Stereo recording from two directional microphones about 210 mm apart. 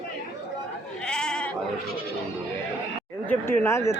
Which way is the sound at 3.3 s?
10° left (ahead or behind).